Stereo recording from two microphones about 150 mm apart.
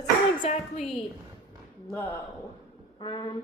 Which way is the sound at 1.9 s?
15° left (ahead or behind).